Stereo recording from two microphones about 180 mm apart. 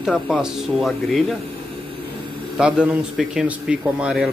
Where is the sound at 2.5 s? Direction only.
5° right (ahead or behind).